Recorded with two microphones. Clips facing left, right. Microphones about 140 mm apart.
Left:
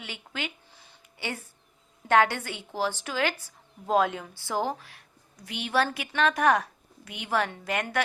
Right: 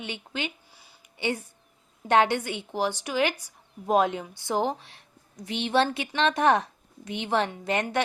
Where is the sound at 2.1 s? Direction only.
20° right (ahead or behind).